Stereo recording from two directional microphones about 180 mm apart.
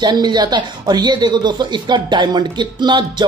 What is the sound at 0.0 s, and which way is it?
Speech, 25° right (ahead or behind).